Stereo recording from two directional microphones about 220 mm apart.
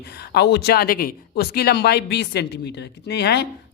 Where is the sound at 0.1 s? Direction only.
45° left (ahead or behind).